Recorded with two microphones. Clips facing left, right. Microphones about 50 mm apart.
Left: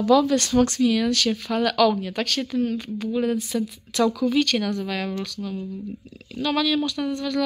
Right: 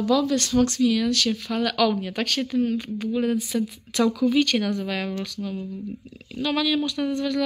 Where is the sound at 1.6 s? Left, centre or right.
Centre.